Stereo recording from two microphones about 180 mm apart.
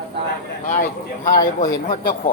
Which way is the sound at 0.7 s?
50° left (ahead or behind).